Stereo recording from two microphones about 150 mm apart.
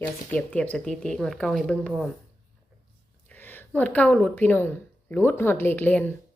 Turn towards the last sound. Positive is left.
turn(degrees=10)  # may be behind; listen again after turning